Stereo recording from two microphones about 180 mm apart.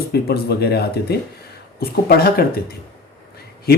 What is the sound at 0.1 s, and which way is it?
Speech, 60° left (ahead or behind).